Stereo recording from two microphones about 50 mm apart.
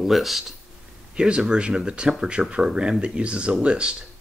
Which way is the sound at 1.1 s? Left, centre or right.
Centre.